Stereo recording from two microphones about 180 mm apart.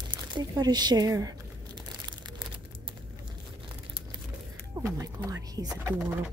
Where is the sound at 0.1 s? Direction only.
25° right (ahead or behind).